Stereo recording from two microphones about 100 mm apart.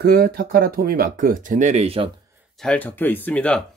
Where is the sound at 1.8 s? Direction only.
75° right (ahead or behind).